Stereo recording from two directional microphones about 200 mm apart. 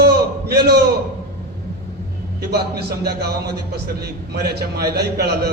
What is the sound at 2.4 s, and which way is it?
Speech, 55° right (ahead or behind).